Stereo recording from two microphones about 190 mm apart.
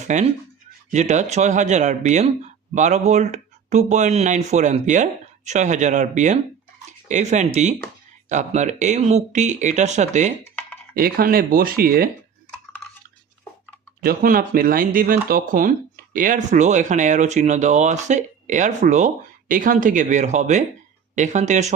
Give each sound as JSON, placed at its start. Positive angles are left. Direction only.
{"t": 0.0, "sound": "speech", "side_deg": -40}
{"t": 10.9, "sound": "speech", "side_deg": -50}
{"t": 14.0, "sound": "speech", "side_deg": -50}